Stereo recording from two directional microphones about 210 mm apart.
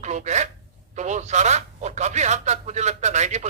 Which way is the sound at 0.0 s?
35° right (ahead or behind).